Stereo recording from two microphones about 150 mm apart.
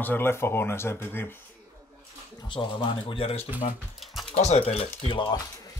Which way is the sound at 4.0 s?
Centre (ahead or behind).